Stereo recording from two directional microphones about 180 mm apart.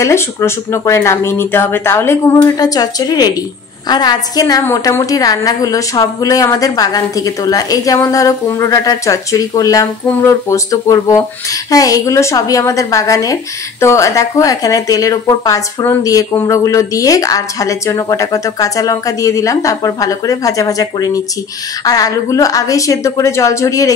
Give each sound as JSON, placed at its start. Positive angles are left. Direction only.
{"t": 0.0, "sound": "a woman's voice", "side_deg": 15}